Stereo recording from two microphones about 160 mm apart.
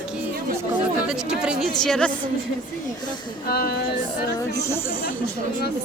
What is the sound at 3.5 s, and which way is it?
Speech, 75° left (ahead or behind).